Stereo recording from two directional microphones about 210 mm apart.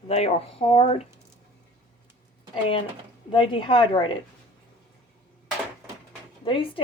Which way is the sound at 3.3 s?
25° left (ahead or behind).